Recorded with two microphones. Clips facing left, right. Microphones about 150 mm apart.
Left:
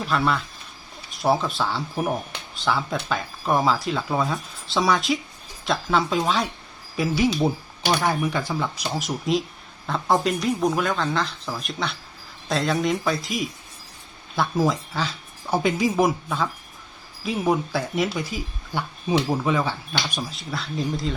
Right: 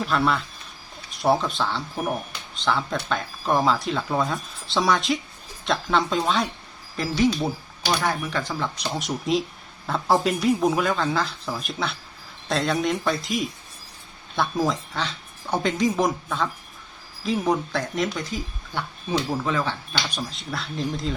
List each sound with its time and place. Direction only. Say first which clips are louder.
0.0 s speech: even; centre (ahead or behind)